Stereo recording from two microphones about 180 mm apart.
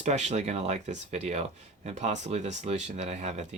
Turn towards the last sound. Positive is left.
turn(degrees=-40)  # may be behind; listen again after turning